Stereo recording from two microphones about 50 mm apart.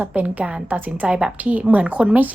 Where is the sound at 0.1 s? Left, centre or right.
Right.